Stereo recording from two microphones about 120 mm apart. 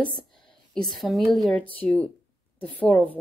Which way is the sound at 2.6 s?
10° left (ahead or behind).